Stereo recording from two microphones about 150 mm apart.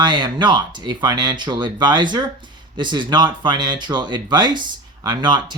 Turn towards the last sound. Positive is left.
turn(degrees=-30)  # may be behind; listen again after turning